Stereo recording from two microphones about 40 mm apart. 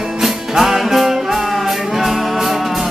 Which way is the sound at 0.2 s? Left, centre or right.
Centre.